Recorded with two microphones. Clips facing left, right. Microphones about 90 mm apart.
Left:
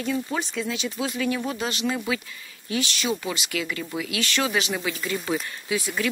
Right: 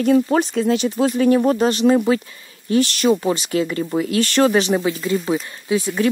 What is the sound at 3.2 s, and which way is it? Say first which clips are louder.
Speech: right 10 dB; 35° right (ahead or behind).